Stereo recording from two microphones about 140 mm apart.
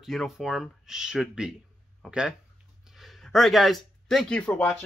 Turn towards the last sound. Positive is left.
turn(degrees=5)  # may be behind; listen again after turning